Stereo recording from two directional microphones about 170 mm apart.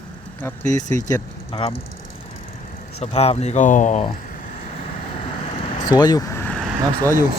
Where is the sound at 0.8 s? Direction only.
45° right (ahead or behind).